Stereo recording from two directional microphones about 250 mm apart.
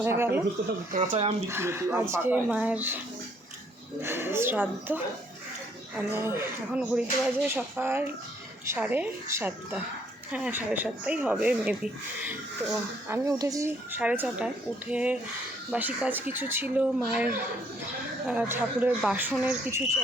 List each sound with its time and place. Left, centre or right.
0.0 s speech: centre
0.9 s speech: right
1.5 s speech: centre
4.0 s speech: centre
6.0 s speech: centre